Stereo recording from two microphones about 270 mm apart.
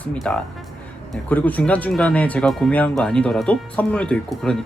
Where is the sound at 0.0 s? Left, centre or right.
Centre.